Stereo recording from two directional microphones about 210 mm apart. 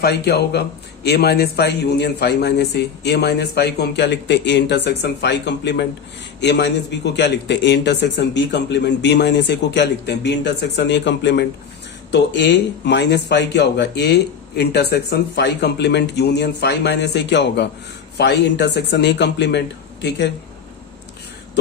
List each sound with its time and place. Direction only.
0.0 s a man's voice: 50° left (ahead or behind)